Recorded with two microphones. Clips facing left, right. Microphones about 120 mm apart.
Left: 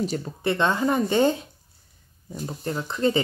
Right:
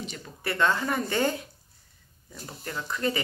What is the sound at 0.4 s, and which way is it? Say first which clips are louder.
Speech: left 3 dB; 25° left (ahead or behind).